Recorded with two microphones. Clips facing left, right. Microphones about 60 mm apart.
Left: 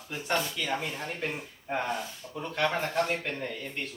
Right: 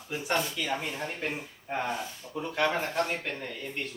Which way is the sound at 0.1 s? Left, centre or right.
Centre.